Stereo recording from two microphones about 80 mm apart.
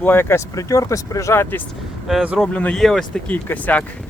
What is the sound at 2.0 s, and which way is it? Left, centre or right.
Speech, centre.